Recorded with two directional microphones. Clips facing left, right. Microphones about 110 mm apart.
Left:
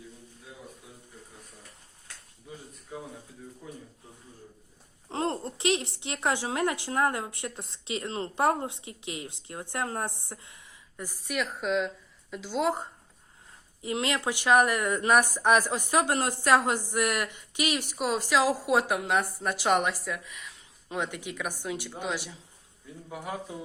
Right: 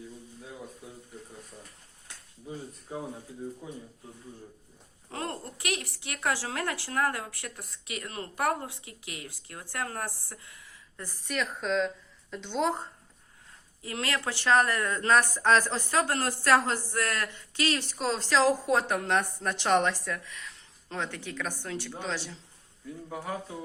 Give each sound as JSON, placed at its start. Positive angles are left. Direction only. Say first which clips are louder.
{"t": 2.9, "sound": "speech", "louder": "right 3 dB", "side_deg": -30}
{"t": 3.6, "sound": "speech", "louder": "right 2 dB", "side_deg": -15}
{"t": 5.0, "sound": "speech", "louder": "left 6 dB", "side_deg": 25}
{"t": 13.8, "sound": "speech", "louder": "left 3 dB", "side_deg": 20}